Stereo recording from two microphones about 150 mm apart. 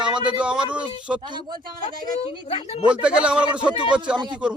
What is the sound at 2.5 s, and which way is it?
Speech, 40° left (ahead or behind).